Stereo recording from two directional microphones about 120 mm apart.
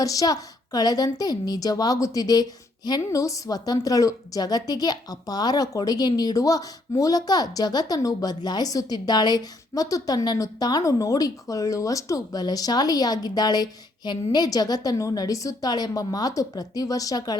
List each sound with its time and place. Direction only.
0.0 s a woman's voice: 30° left (ahead or behind)